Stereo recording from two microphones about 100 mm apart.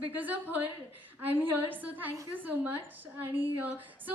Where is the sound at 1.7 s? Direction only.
20° right (ahead or behind).